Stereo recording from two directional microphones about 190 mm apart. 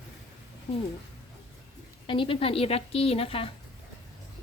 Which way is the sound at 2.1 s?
30° left (ahead or behind).